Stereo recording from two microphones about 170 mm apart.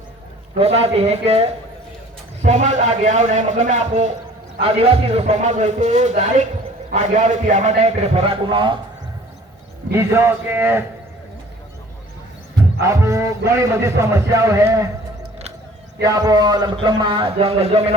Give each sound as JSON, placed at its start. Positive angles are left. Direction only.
{"t": 0.5, "sound": "a man's voice", "side_deg": -35}
{"t": 9.9, "sound": "speech", "side_deg": -15}
{"t": 12.8, "sound": "speech", "side_deg": -20}
{"t": 16.0, "sound": "a man's voice", "side_deg": -20}